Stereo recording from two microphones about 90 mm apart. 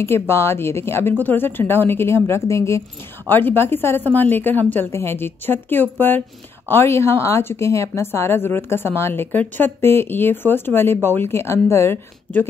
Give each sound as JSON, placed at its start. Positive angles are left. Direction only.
{"t": 0.0, "sound": "a woman's voice", "side_deg": 30}